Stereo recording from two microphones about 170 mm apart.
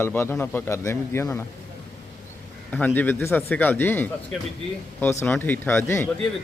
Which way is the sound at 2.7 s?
10° left (ahead or behind).